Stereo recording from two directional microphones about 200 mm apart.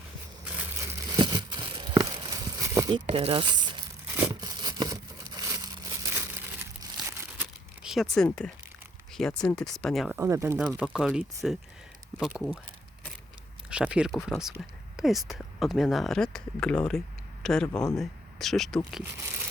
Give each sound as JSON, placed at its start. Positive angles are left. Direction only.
{"t": 0.4, "sound": "tearing", "side_deg": -10}
{"t": 3.1, "sound": "speech", "side_deg": -30}
{"t": 4.1, "sound": "tearing", "side_deg": -10}
{"t": 8.1, "sound": "speech", "side_deg": 5}
{"t": 10.2, "sound": "speech", "side_deg": -15}
{"t": 10.7, "sound": "speech", "side_deg": 0}
{"t": 13.7, "sound": "speech", "side_deg": -5}